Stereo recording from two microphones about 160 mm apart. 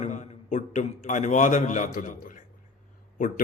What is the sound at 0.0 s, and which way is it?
A man's voice, 50° left (ahead or behind).